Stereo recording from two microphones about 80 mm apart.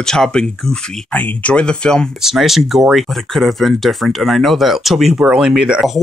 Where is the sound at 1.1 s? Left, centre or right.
Centre.